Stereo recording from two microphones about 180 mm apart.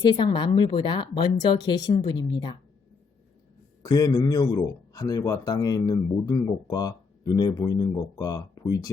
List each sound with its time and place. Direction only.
0.0 s speech: 25° left (ahead or behind)
3.8 s speech: 20° left (ahead or behind)